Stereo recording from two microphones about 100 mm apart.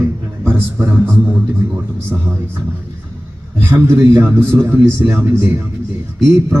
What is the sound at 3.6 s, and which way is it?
A man's voice, 25° right (ahead or behind).